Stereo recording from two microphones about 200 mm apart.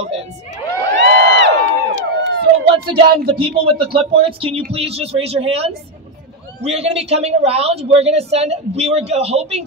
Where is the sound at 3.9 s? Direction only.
25° right (ahead or behind).